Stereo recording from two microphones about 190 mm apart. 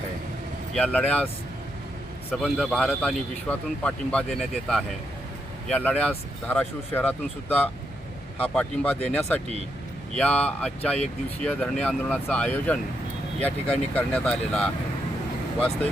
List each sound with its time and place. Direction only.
0.7 s speech: 5° left (ahead or behind)
2.3 s a man's voice: 5° left (ahead or behind)